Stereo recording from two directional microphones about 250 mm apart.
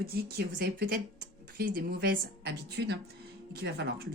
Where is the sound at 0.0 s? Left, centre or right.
Right.